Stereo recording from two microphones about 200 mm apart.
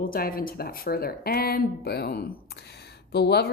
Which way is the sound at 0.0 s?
45° left (ahead or behind).